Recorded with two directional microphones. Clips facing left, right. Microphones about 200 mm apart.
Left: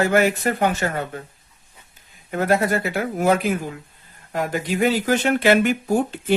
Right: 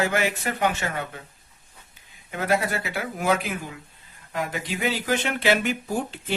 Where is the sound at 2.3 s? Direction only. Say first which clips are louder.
Left 5 dB; 45° left (ahead or behind).